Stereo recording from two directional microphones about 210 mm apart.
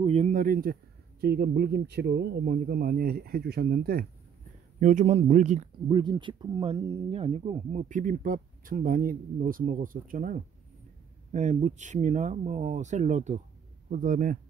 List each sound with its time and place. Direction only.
0.0 s speech: 30° right (ahead or behind)
5.9 s speech: 20° right (ahead or behind); by 14.4 s 40° right (ahead or behind)